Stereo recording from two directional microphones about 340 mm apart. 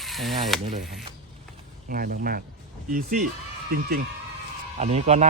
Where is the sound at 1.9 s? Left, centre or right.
Right.